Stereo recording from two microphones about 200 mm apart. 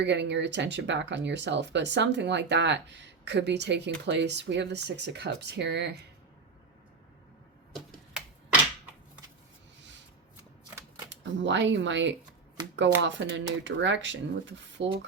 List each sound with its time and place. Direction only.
0.0 s speech: 60° right (ahead or behind)
11.1 s speech: 60° right (ahead or behind)